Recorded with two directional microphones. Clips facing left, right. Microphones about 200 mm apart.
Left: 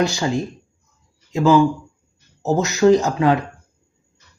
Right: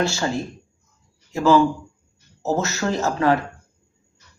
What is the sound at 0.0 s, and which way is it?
Speech, 15° left (ahead or behind).